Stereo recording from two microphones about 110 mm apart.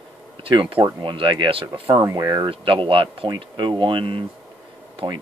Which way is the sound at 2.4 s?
50° right (ahead or behind).